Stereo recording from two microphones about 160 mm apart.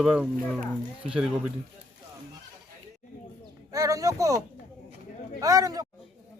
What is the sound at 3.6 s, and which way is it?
Speech, 20° right (ahead or behind).